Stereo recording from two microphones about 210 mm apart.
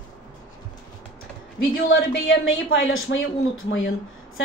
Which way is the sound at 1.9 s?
65° left (ahead or behind).